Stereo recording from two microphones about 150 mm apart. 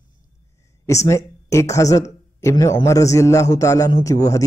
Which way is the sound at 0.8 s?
20° left (ahead or behind).